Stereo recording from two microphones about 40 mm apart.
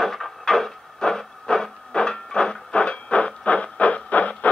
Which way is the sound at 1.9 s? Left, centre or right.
Left.